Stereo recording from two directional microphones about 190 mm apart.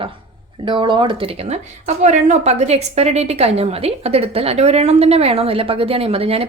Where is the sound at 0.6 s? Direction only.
25° right (ahead or behind).